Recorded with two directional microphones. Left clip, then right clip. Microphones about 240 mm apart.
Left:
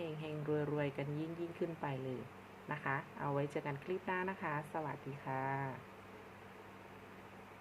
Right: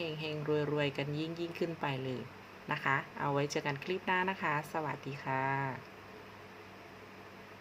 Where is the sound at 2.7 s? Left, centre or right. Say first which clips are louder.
Right 7 dB; centre.